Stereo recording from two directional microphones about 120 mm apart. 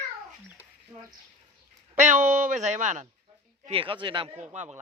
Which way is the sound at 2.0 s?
90° right.